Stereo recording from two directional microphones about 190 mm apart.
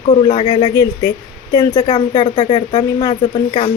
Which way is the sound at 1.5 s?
25° left (ahead or behind).